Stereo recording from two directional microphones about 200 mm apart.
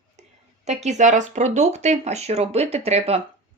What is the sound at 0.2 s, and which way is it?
A woman's voice, 35° right (ahead or behind).